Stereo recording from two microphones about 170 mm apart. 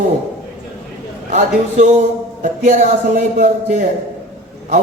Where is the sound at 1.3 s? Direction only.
45° right (ahead or behind).